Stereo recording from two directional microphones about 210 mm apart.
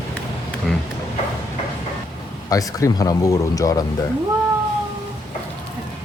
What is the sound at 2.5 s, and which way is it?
Speech, 15° left (ahead or behind).